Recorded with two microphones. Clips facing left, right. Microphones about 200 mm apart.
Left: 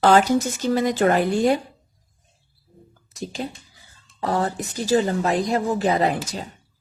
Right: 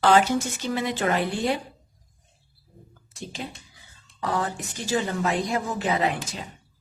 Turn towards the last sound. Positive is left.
turn(degrees=40)  # may be behind; listen again after turning